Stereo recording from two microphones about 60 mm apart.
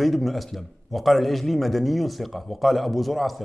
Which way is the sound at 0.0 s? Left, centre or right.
Centre.